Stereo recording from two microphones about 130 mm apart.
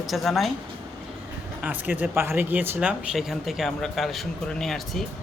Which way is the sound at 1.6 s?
15° right (ahead or behind).